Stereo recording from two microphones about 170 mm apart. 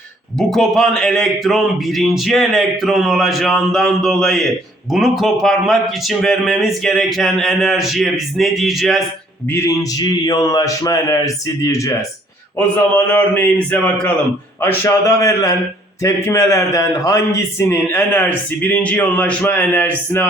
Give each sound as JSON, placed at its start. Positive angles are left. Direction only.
{"t": 0.3, "sound": "a man's voice", "side_deg": 0}
{"t": 9.5, "sound": "a man's voice", "side_deg": 15}
{"t": 13.1, "sound": "a man's voice", "side_deg": 10}